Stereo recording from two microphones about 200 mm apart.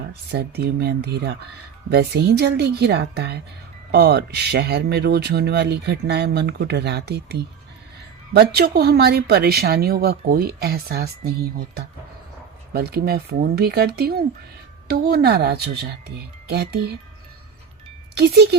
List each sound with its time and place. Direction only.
0.3 s speech: 55° right (ahead or behind)